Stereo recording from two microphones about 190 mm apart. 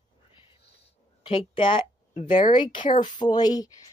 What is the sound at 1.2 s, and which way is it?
Speech, 25° left (ahead or behind).